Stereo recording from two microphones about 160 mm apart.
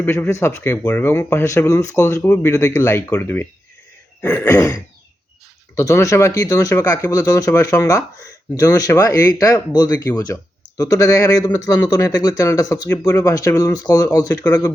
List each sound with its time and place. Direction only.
0.0 s speech: 15° left (ahead or behind)